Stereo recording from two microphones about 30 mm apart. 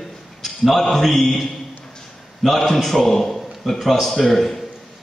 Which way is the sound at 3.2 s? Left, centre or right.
Centre.